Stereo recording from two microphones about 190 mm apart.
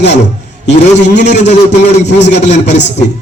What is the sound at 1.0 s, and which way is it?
Speech, 65° left (ahead or behind).